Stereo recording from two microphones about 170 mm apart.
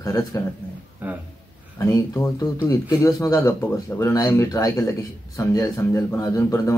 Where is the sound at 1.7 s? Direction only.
15° left (ahead or behind).